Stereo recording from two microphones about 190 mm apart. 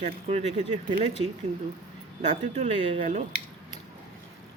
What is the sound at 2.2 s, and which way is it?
Speech, 40° right (ahead or behind).